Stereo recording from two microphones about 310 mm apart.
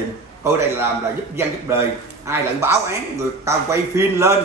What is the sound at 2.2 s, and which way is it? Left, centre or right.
A man's voice, centre.